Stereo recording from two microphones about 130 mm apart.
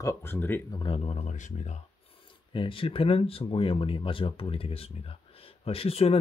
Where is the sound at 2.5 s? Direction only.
40° left (ahead or behind).